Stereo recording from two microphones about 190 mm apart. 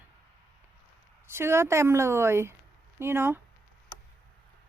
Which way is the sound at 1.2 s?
15° right (ahead or behind).